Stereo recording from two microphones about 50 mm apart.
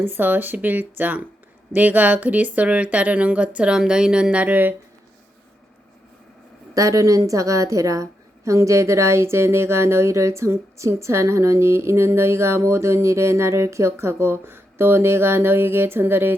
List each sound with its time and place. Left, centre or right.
0.0 s speech: right
4.4 s speech: right
6.7 s a woman's voice: right